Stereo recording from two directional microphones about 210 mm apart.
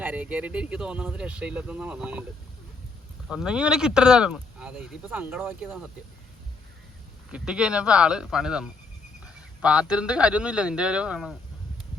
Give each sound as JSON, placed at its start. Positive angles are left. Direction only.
{"t": 0.0, "sound": "speech", "side_deg": -10}
{"t": 3.2, "sound": "speech", "side_deg": -5}
{"t": 7.3, "sound": "speech", "side_deg": -5}